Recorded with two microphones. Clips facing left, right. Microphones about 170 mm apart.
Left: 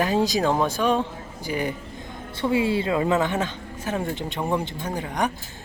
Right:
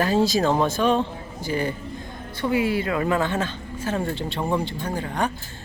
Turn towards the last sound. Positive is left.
turn(degrees=15)  # may be behind; listen again after turning